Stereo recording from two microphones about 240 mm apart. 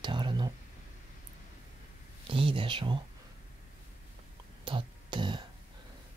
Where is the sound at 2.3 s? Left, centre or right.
Right.